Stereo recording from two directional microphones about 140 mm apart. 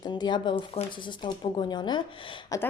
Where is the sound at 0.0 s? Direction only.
30° left (ahead or behind).